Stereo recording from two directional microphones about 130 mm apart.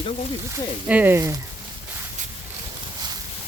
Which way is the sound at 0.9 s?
15° right (ahead or behind).